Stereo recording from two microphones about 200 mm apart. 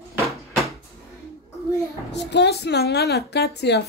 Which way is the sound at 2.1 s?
60° left (ahead or behind).